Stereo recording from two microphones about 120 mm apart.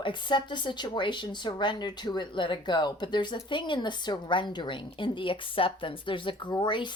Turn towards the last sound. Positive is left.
turn(degrees=40)  # may be behind; listen again after turning